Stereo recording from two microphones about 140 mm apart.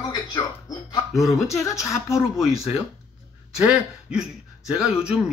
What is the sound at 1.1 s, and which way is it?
A man's voice, centre (ahead or behind).